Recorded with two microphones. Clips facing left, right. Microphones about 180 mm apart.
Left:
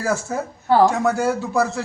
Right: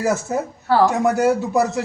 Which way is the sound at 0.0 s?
20° right (ahead or behind).